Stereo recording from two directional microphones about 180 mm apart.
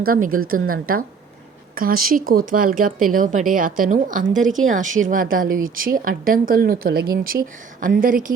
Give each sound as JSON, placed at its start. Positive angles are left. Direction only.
{"t": 0.0, "sound": "speech", "side_deg": -55}